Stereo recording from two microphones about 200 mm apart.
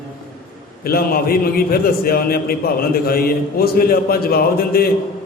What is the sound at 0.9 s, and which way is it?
A man's voice, 50° left (ahead or behind).